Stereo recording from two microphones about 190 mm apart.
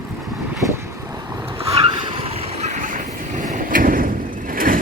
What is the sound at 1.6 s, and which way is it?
Vehicle, 30° right (ahead or behind).